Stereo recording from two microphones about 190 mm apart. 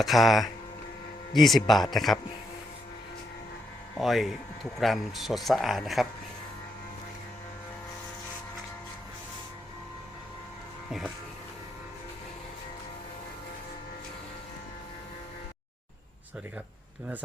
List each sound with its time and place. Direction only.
0.0 s speech: centre (ahead or behind)
3.9 s speech: centre (ahead or behind)